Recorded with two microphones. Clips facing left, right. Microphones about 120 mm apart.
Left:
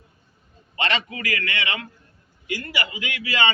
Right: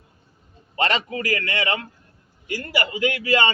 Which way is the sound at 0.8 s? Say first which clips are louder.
Right 3 dB; 40° right (ahead or behind).